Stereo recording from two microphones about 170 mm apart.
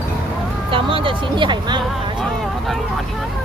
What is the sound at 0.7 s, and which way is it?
Speech, 30° right (ahead or behind).